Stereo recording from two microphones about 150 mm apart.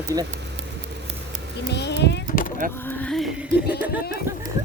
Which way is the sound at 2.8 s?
5° left (ahead or behind).